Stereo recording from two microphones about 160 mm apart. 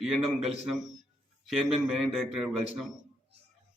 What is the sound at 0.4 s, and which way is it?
A man's voice, centre (ahead or behind).